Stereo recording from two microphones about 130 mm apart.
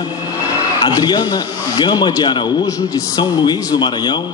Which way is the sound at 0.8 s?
30° left (ahead or behind).